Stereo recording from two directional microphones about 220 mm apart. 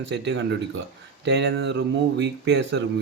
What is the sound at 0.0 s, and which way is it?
Speech, 55° right (ahead or behind).